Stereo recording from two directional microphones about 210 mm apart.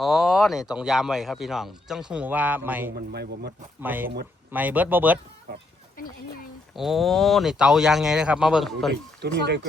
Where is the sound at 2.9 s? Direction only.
50° right (ahead or behind).